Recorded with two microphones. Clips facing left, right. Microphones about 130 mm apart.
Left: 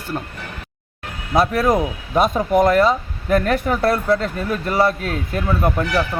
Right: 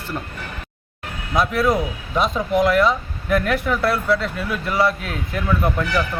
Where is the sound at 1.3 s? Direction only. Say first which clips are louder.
Left 2 dB; 40° left (ahead or behind).